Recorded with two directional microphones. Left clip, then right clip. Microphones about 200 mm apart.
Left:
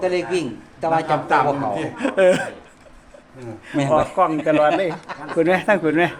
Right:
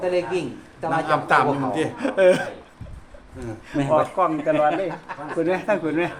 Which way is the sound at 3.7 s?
30° left (ahead or behind).